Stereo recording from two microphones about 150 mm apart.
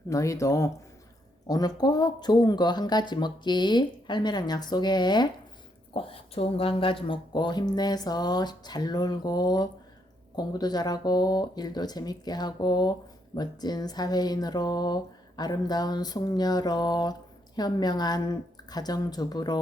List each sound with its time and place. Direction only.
0.1 s speech: 20° left (ahead or behind)